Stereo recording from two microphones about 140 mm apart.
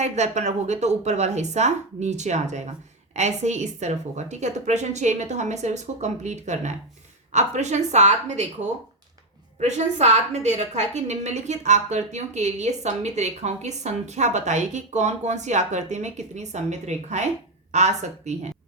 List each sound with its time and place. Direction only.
0.0 s a woman's voice: 55° right (ahead or behind)